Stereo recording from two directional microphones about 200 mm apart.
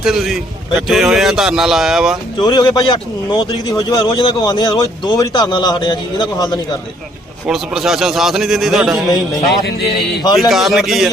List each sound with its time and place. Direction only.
0.0 s speech: centre (ahead or behind)
2.4 s a man's voice: 20° left (ahead or behind)
7.4 s speech: centre (ahead or behind)
9.0 s a man's voice: 20° left (ahead or behind)
9.5 s music: 55° left (ahead or behind)
10.5 s speech: centre (ahead or behind)